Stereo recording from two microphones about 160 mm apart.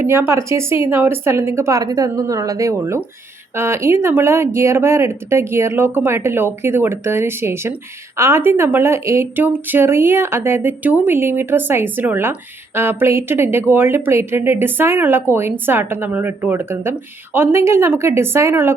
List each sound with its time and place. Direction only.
0.0 s speech: 15° right (ahead or behind)